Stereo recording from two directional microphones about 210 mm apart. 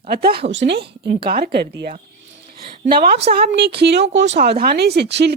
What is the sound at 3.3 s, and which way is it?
Speech, 50° right (ahead or behind).